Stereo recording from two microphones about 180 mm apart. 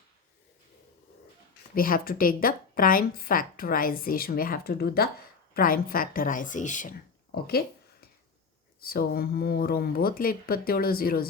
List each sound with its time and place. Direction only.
1.7 s a woman's voice: 50° left (ahead or behind)
7.3 s speech: 60° left (ahead or behind)
8.8 s speech: 55° left (ahead or behind)